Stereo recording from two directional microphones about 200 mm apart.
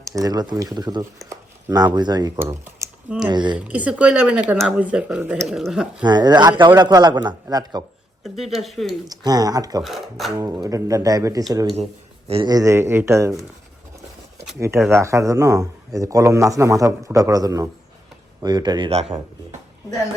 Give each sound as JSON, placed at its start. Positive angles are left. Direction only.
{"t": 0.1, "sound": "speech", "side_deg": -20}
{"t": 3.2, "sound": "a man's voice", "side_deg": -20}
{"t": 3.7, "sound": "speech", "side_deg": -5}
{"t": 6.1, "sound": "a man's voice", "side_deg": -20}
{"t": 8.2, "sound": "speech", "side_deg": 0}
{"t": 9.0, "sound": "a man's voice", "side_deg": -20}
{"t": 9.8, "sound": "speech", "side_deg": 0}
{"t": 10.3, "sound": "a man's voice", "side_deg": -15}